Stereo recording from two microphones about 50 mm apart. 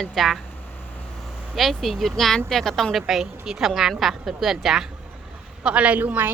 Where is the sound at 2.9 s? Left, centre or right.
Centre.